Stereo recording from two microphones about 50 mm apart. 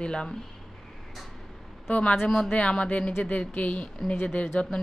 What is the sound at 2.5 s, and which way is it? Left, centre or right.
Speech, left.